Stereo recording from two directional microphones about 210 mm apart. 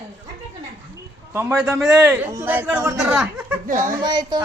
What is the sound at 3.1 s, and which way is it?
Speech, centre (ahead or behind).